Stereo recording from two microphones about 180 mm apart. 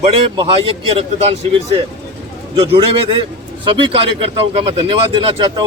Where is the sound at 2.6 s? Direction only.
30° right (ahead or behind).